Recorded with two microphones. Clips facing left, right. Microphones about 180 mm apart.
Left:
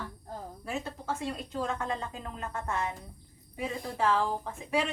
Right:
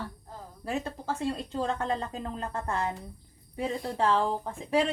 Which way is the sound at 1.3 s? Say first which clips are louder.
Right 5 dB; 30° right (ahead or behind).